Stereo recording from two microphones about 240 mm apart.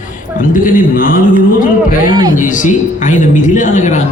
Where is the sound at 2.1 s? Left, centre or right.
Centre.